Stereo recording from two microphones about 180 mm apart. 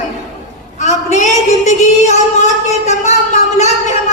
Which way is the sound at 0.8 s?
40° left (ahead or behind).